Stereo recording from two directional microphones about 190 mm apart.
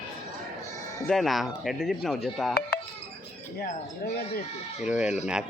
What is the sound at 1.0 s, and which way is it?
Speech, centre (ahead or behind).